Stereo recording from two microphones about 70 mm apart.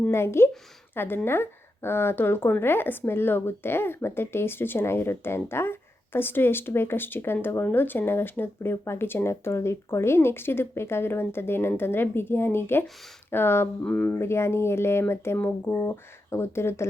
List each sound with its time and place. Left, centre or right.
0.1 s speech: left
13.8 s speech: left
14.2 s speech: left